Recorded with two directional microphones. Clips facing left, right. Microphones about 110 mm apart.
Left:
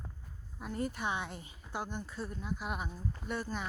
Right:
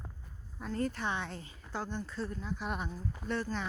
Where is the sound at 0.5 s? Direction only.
10° left (ahead or behind).